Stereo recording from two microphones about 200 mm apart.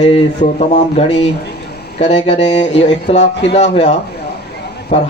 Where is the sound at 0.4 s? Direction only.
35° left (ahead or behind).